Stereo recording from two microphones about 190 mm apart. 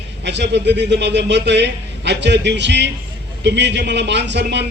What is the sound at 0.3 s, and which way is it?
A man's voice, 65° right (ahead or behind).